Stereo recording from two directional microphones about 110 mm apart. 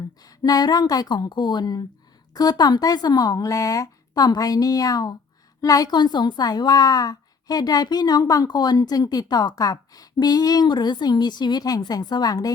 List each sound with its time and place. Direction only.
0.2 s a woman's voice: 35° left (ahead or behind)